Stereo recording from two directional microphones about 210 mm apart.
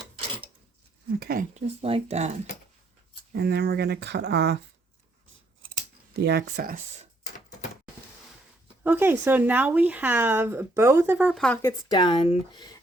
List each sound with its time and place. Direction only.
1.2 s speech: 40° right (ahead or behind)
3.3 s speech: 50° right (ahead or behind)
6.2 s speech: 50° right (ahead or behind)
8.8 s speech: 10° right (ahead or behind)
11.6 s speech: 20° left (ahead or behind)